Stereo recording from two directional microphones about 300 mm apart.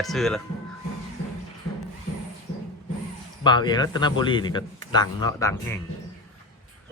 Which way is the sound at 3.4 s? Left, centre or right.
Centre.